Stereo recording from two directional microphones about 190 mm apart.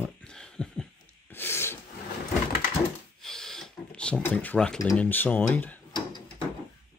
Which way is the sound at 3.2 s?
Centre (ahead or behind).